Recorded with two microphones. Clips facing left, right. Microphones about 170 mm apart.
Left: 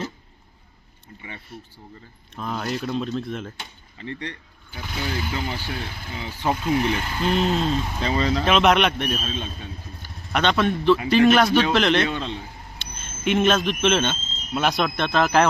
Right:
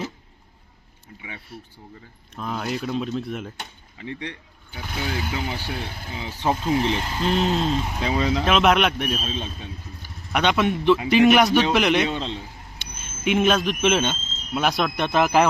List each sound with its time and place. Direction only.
2.3 s speech: 5° right (ahead or behind)
6.1 s speech: 20° right (ahead or behind)
7.3 s a man's voice: centre (ahead or behind)
9.2 s speech: 25° right (ahead or behind)
10.0 s a man's voice: 10° right (ahead or behind)
12.1 s speech: 30° right (ahead or behind)
12.8 s speech: 5° right (ahead or behind)
15.0 s a man's voice: 15° right (ahead or behind)